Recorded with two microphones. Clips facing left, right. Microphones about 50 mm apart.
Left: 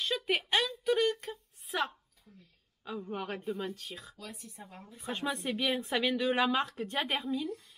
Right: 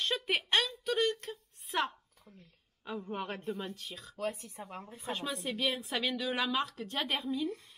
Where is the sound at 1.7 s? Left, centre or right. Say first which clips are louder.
Even; centre.